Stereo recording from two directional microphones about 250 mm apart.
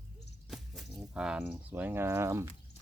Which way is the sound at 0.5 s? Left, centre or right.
Centre.